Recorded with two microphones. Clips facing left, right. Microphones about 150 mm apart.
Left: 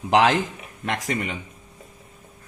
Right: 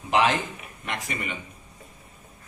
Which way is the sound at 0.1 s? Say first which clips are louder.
Left 4 dB; 90° left.